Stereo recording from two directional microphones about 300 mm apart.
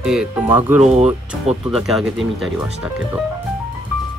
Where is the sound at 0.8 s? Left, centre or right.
Right.